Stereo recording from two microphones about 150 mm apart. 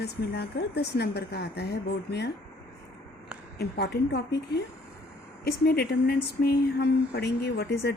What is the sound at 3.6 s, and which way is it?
Speech, 90° left.